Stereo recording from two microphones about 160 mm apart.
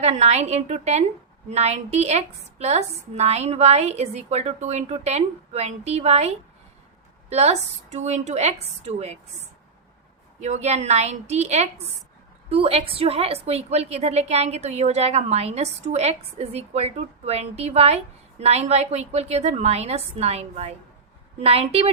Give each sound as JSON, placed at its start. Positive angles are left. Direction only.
{"t": 0.0, "sound": "a woman's voice", "side_deg": -40}